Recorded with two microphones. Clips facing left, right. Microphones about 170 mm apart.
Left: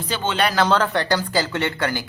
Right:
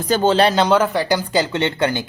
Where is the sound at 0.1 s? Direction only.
40° right (ahead or behind).